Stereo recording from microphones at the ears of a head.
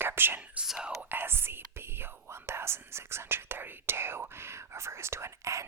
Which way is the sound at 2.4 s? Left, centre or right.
Right.